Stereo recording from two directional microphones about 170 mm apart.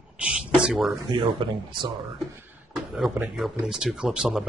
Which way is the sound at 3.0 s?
Centre (ahead or behind).